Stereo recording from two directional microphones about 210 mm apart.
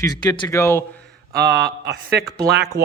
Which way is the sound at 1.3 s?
50° right (ahead or behind).